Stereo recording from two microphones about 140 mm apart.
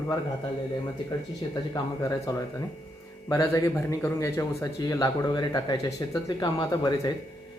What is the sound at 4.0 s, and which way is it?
Speech, 20° left (ahead or behind).